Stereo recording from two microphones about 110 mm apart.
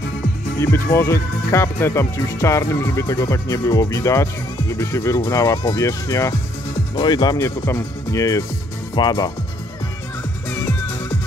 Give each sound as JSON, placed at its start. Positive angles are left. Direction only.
{"t": 0.6, "sound": "speech", "side_deg": 25}
{"t": 7.0, "sound": "speech", "side_deg": 40}